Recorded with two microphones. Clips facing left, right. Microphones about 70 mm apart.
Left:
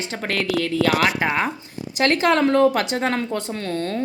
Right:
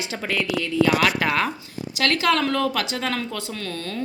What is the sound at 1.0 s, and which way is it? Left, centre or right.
Speech, left.